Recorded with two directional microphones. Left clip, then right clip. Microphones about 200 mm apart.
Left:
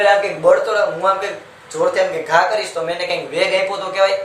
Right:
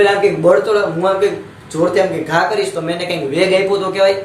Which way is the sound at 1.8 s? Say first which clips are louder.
Right 2 dB; 10° left (ahead or behind).